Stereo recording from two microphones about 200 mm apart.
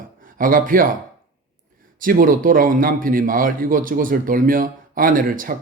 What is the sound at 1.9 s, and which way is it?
A man's voice, 45° right (ahead or behind).